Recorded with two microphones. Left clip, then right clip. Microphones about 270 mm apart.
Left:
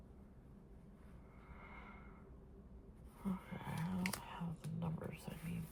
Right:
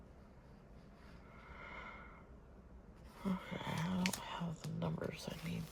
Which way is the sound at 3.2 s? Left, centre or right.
Centre.